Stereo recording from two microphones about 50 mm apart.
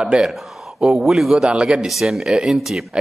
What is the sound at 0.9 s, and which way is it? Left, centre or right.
Speech, centre.